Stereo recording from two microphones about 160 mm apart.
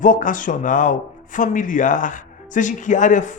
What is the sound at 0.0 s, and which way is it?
A man's voice, 55° left (ahead or behind).